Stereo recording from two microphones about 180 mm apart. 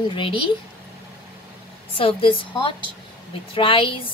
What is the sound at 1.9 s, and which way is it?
A woman's voice, 30° left (ahead or behind).